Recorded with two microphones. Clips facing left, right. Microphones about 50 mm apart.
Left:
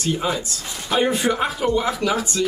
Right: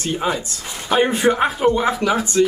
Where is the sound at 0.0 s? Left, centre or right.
Right.